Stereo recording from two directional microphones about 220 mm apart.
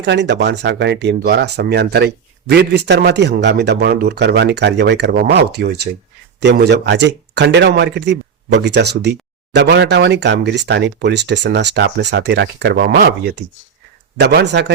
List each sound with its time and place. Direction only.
0.0 s speech: 50° right (ahead or behind)